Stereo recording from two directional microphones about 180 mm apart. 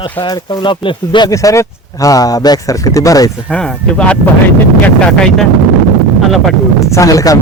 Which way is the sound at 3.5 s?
5° left (ahead or behind).